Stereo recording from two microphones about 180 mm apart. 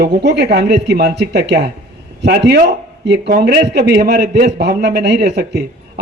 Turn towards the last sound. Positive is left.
turn(degrees=-65)  # may be behind; listen again after turning